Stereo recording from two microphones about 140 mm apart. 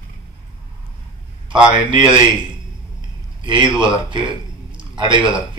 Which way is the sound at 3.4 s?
35° right (ahead or behind).